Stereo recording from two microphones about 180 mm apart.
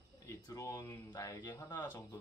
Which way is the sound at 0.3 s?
20° left (ahead or behind).